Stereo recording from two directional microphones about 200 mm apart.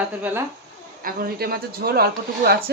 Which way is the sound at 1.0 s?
50° right (ahead or behind).